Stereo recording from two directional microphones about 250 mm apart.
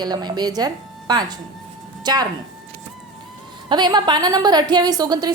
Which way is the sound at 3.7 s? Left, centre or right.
Centre.